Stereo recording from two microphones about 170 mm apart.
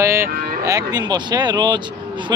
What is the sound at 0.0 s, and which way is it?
A man's voice, 15° right (ahead or behind).